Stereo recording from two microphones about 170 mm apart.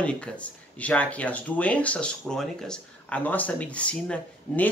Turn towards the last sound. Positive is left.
turn(degrees=10)  # may be behind; listen again after turning